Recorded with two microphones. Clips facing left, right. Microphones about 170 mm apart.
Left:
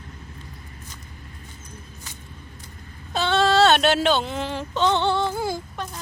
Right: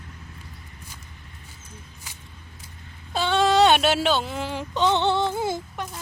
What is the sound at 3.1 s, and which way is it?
Speech, 10° right (ahead or behind).